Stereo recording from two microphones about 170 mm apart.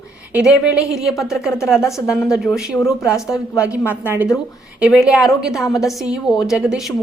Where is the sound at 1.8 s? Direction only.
15° left (ahead or behind).